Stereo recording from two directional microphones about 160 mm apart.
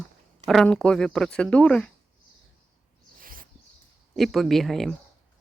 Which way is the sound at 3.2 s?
60° right (ahead or behind).